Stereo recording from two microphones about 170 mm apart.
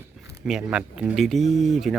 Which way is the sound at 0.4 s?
5° right (ahead or behind).